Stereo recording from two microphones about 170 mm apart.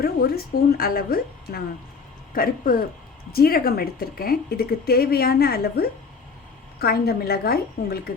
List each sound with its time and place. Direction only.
0.0 s speech: 60° left (ahead or behind)